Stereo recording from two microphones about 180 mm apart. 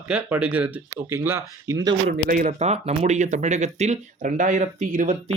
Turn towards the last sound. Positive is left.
turn(degrees=-45)  # may be behind; listen again after turning